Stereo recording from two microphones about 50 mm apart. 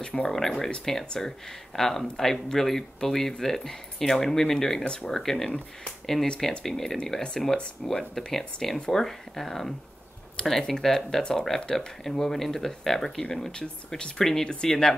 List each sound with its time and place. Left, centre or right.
0.0 s speech: centre
6.6 s speech: centre
8.7 s speech: centre
9.0 s speech: centre